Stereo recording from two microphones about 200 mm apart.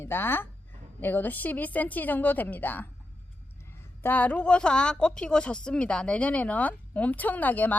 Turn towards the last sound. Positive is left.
turn(degrees=10)  # may be behind; listen again after turning